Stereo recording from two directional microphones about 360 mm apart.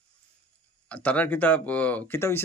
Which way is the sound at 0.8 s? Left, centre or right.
Centre.